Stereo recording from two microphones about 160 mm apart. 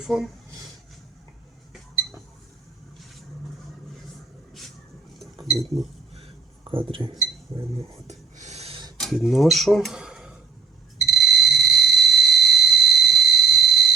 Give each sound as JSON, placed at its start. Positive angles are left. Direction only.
{"t": 0.0, "sound": "speech", "side_deg": 0}
{"t": 5.5, "sound": "speech", "side_deg": 0}
{"t": 6.7, "sound": "speech", "side_deg": -35}
{"t": 8.0, "sound": "a sound", "side_deg": -45}
{"t": 9.0, "sound": "speech", "side_deg": 0}
{"t": 11.0, "sound": "fire alarm", "side_deg": 0}